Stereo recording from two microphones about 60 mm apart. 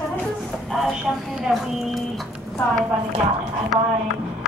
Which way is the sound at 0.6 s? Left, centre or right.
Centre.